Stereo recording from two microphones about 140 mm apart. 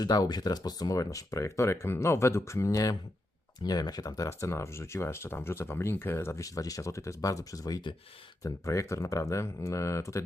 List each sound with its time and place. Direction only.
0.0 s speech: 30° left (ahead or behind)